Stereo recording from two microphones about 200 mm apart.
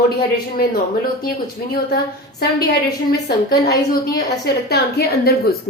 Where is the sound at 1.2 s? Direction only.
50° left (ahead or behind).